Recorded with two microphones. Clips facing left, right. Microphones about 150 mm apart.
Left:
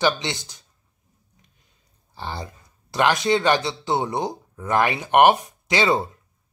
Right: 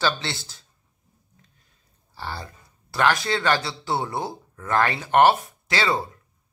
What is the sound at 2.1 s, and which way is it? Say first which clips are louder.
Speech: left 2 dB; 20° left (ahead or behind).